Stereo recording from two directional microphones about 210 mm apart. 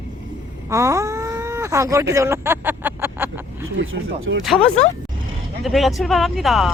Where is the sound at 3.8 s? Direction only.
65° right (ahead or behind).